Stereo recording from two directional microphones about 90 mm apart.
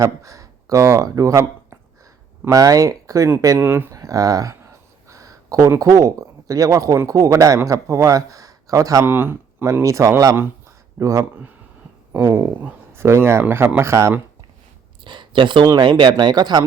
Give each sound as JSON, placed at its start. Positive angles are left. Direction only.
{"t": 0.0, "sound": "speech", "side_deg": -35}
{"t": 3.6, "sound": "speech", "side_deg": -25}
{"t": 3.9, "sound": "a sound", "side_deg": -40}
{"t": 5.8, "sound": "speech", "side_deg": -40}
{"t": 9.0, "sound": "speech", "side_deg": -25}
{"t": 9.8, "sound": "speech", "side_deg": -35}
{"t": 12.1, "sound": "speech", "side_deg": -25}
{"t": 15.0, "sound": "a sound", "side_deg": -60}
{"t": 15.8, "sound": "speech", "side_deg": -60}